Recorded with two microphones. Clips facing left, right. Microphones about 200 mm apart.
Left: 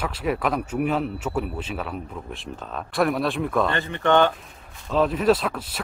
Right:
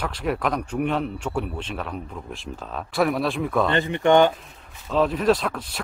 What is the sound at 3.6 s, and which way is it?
Speech, 20° right (ahead or behind).